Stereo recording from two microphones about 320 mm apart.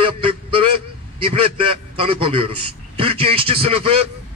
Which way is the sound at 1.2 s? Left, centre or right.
Centre.